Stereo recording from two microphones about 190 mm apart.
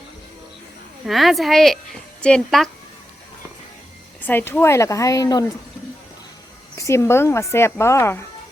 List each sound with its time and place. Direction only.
1.0 s a woman's voice: centre (ahead or behind)
4.3 s speech: 10° left (ahead or behind)
6.7 s speech: 15° left (ahead or behind)